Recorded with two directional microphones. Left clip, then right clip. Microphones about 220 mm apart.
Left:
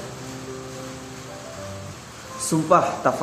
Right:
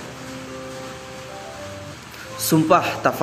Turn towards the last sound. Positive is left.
turn(degrees=-20)  # may be behind; listen again after turning